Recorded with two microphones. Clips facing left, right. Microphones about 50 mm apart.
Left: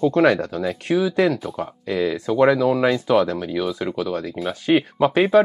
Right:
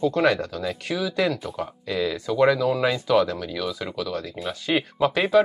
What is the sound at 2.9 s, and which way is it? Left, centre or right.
Speech, left.